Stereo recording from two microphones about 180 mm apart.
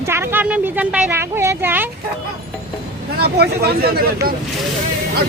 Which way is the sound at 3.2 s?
60° right (ahead or behind).